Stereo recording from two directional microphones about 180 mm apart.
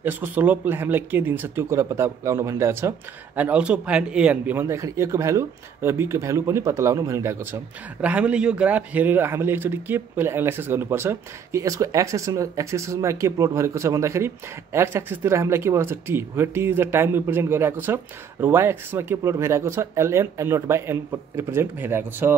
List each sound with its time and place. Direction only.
0.0 s a man's voice: 10° right (ahead or behind)
8.0 s a man's voice: 5° right (ahead or behind)